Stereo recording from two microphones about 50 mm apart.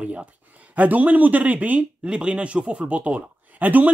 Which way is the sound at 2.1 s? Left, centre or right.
Right.